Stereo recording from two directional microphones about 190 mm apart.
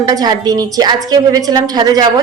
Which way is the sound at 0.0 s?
20° right (ahead or behind).